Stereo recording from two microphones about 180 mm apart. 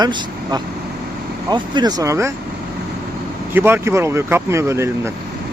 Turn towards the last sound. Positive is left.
turn(degrees=-15)  # may be behind; listen again after turning